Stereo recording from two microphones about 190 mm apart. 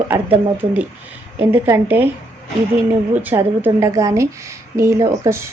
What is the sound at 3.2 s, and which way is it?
Speech, 10° right (ahead or behind).